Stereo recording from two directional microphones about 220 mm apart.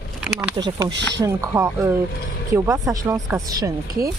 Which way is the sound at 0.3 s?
15° right (ahead or behind).